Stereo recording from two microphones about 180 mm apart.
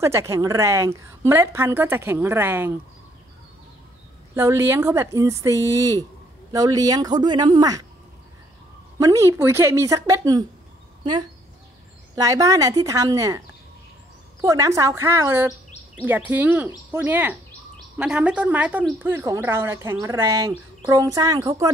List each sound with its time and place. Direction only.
0.0 s a woman's voice: 15° right (ahead or behind)
4.4 s a woman's voice: 15° right (ahead or behind)
8.9 s a woman's voice: 20° right (ahead or behind)
12.2 s speech: 20° right (ahead or behind)
14.4 s a woman's voice: 15° right (ahead or behind)